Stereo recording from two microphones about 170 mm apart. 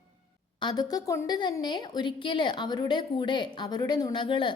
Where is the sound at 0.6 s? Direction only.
25° left (ahead or behind).